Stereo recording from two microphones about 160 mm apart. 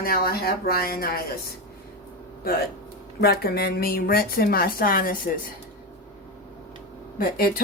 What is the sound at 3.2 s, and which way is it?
Speech, 85° left.